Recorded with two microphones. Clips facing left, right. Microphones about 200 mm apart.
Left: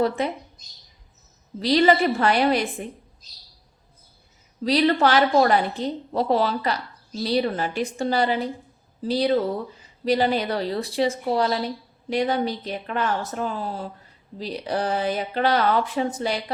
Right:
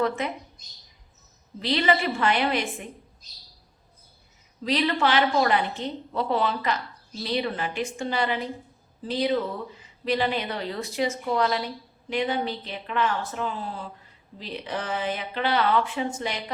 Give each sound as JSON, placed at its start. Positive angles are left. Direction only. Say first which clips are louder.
{"t": 1.5, "sound": "a woman's voice", "louder": "left 6 dB", "side_deg": 40}
{"t": 4.6, "sound": "a woman's voice", "louder": "left 5 dB", "side_deg": 35}